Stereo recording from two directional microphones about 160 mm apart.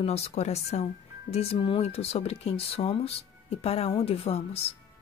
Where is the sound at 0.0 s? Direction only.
40° left (ahead or behind).